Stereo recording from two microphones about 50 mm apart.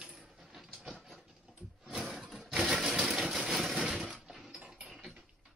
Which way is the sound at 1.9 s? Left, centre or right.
Centre.